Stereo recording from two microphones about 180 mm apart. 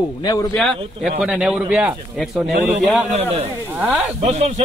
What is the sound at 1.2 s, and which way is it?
Speech, 5° right (ahead or behind).